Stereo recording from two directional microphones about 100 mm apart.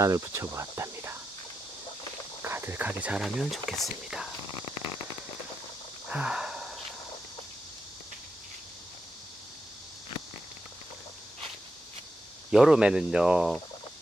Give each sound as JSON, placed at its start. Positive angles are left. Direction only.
{"t": 0.0, "sound": "speech", "side_deg": -30}
{"t": 2.4, "sound": "speech", "side_deg": -25}
{"t": 6.1, "sound": "a sound", "side_deg": -10}
{"t": 12.5, "sound": "speech", "side_deg": -5}